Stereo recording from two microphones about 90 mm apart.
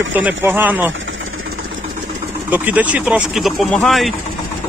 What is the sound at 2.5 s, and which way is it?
Speech, 20° right (ahead or behind).